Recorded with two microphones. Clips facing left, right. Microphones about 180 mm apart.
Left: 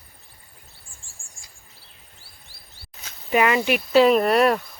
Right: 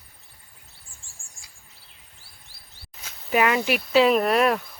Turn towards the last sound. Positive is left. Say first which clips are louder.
# left 2 dB
turn(degrees=0)  # may be behind; listen again after turning